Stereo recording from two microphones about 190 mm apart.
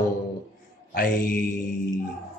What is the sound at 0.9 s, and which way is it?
Speech, 50° left (ahead or behind).